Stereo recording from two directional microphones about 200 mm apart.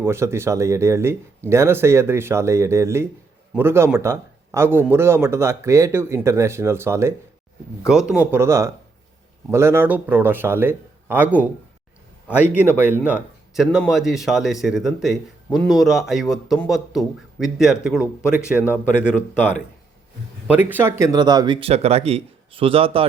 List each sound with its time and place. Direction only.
0.0 s a man's voice: 15° right (ahead or behind)
12.4 s a man's voice: 10° right (ahead or behind); by 23.0 s 30° right (ahead or behind)